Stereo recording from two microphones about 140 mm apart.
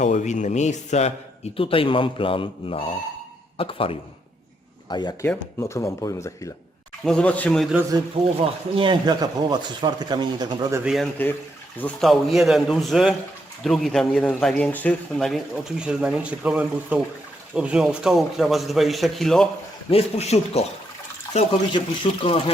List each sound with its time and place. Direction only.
0.0 s speech: 60° left (ahead or behind)
1.5 s a man's voice: 40° left (ahead or behind)
5.2 s speech: 15° left (ahead or behind)
7.0 s speech: 5° left (ahead or behind)
7.8 s speech: 25° right (ahead or behind)
8.4 s speech: 40° right (ahead or behind)
10.8 s a man's voice: centre (ahead or behind)
15.8 s a man's voice: 5° right (ahead or behind)
19.9 s speech: 45° left (ahead or behind)
21.7 s a man's voice: 40° left (ahead or behind)